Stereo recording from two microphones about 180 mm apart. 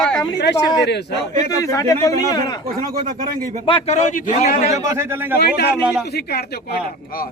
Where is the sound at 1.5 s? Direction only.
20° left (ahead or behind).